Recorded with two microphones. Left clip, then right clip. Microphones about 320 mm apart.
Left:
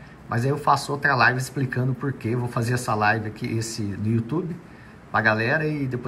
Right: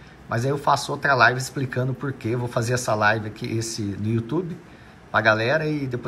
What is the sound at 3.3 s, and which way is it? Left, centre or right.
Speech, right.